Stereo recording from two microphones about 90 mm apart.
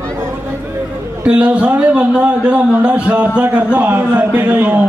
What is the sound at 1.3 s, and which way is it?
A man's voice, 15° right (ahead or behind).